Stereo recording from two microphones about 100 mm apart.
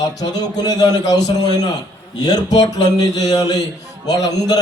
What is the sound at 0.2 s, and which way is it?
A man's voice, 40° left (ahead or behind).